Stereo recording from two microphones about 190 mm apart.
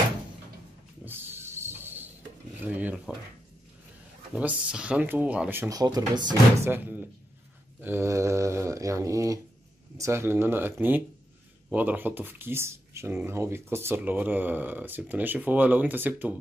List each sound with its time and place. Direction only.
1.0 s a sound: 10° right (ahead or behind)
2.6 s speech: 10° right (ahead or behind)
4.3 s speech: 5° right (ahead or behind)
6.7 s speech: 10° right (ahead or behind)